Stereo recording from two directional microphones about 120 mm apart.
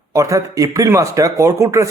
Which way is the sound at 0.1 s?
25° right (ahead or behind).